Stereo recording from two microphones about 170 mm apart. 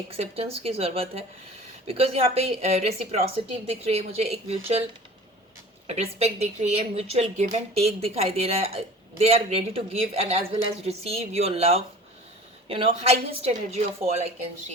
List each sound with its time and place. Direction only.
0.1 s a woman's voice: 35° right (ahead or behind)
5.9 s a woman's voice: 40° right (ahead or behind)